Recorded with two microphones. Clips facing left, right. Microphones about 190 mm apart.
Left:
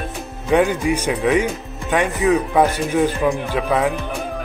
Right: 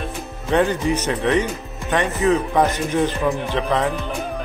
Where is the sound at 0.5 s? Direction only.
10° left (ahead or behind).